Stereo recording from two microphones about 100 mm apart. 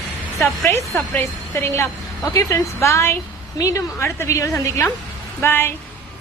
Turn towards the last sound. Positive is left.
turn(degrees=25)  # may be behind; listen again after turning